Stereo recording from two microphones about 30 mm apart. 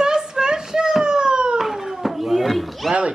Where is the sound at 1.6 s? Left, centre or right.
Centre.